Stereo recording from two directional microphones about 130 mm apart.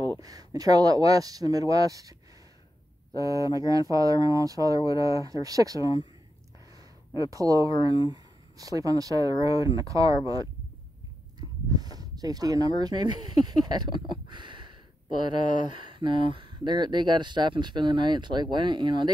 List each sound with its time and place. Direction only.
0.2 s speech: 30° right (ahead or behind)
3.2 s speech: 25° right (ahead or behind)
7.2 s speech: 25° right (ahead or behind)